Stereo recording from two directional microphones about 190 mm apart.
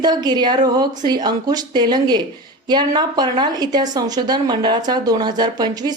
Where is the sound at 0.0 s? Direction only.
20° right (ahead or behind).